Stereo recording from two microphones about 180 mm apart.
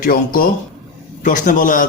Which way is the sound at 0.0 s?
50° left (ahead or behind).